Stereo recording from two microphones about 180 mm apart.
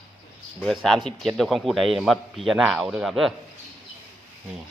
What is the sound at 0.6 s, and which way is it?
A man's voice, centre (ahead or behind).